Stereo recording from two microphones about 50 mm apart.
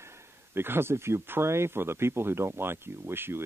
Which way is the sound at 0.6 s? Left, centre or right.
Right.